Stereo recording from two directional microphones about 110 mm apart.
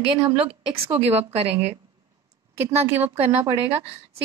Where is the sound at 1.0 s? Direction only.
70° right (ahead or behind).